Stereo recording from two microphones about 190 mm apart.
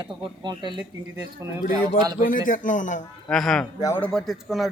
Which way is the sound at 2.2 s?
45° left (ahead or behind).